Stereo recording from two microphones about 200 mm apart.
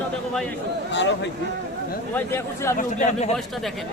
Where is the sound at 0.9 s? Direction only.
65° left (ahead or behind).